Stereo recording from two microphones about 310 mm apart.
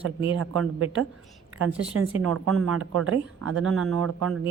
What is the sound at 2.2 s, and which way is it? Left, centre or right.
Speech, right.